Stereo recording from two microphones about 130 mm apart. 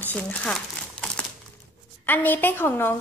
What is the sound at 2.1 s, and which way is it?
Speech, 15° left (ahead or behind).